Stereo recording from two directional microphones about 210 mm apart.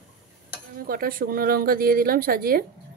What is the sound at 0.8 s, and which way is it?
Speech, 45° right (ahead or behind).